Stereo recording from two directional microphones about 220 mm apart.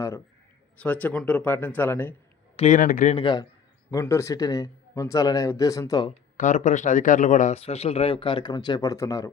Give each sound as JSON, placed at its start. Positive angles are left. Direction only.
{"t": 0.8, "sound": "a man's voice", "side_deg": 5}
{"t": 2.6, "sound": "speech", "side_deg": 35}
{"t": 3.9, "sound": "a man's voice", "side_deg": 15}
{"t": 6.3, "sound": "speech", "side_deg": 35}